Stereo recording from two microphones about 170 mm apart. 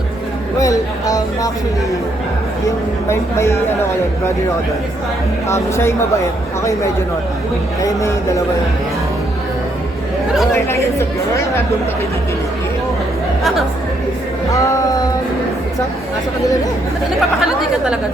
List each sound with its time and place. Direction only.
0.6 s a sound: 20° left (ahead or behind)
3.1 s speech: 15° left (ahead or behind)
5.5 s speech: 15° left (ahead or behind)
14.5 s music: 20° left (ahead or behind)
17.2 s speech: centre (ahead or behind)